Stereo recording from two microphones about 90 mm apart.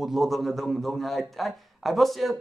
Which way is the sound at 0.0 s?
Centre (ahead or behind).